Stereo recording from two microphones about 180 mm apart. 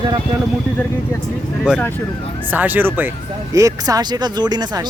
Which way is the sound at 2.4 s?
10° right (ahead or behind).